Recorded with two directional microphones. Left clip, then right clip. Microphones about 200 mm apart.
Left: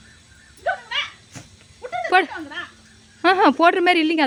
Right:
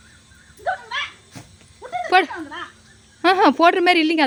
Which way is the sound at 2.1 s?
Centre (ahead or behind).